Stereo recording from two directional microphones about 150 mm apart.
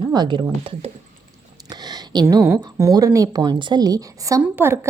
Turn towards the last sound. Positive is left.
turn(degrees=-15)  # may be behind; listen again after turning